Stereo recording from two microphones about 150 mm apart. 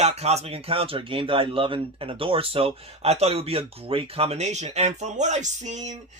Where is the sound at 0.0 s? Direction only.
45° right (ahead or behind).